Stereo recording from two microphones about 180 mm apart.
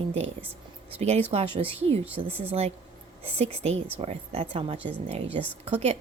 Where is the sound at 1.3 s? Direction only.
30° right (ahead or behind).